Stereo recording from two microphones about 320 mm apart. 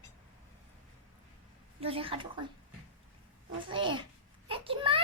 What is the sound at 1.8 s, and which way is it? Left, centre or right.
Speech, centre.